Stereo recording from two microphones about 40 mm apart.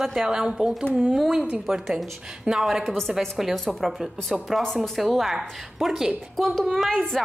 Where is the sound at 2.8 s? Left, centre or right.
Centre.